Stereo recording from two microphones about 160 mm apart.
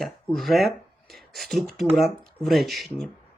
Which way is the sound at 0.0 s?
Centre (ahead or behind).